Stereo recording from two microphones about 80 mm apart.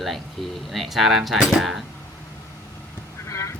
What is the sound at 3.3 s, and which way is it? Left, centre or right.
Honk, left.